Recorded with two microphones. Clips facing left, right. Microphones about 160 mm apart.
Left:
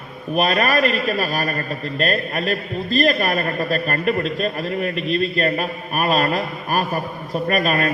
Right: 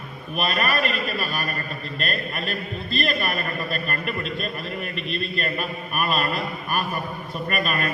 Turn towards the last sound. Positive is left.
turn(degrees=40)  # may be behind; listen again after turning